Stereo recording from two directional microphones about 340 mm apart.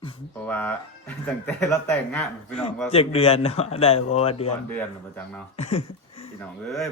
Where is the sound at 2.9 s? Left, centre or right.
Centre.